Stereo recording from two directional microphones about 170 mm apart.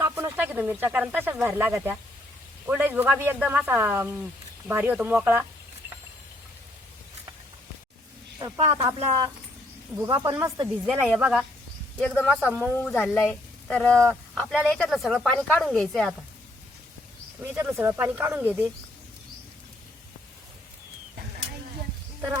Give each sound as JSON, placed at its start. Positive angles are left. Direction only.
{"t": 0.0, "sound": "speech", "side_deg": -10}
{"t": 8.4, "sound": "speech", "side_deg": -25}
{"t": 11.9, "sound": "a woman's voice", "side_deg": 10}
{"t": 17.4, "sound": "speech", "side_deg": -15}